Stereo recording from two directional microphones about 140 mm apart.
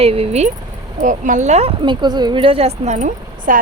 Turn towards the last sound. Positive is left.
turn(degrees=-70)  # may be behind; listen again after turning